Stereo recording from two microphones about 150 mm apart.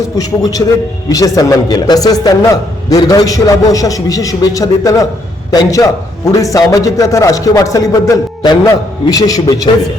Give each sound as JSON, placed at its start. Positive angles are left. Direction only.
{"t": 0.2, "sound": "a man's voice", "side_deg": 25}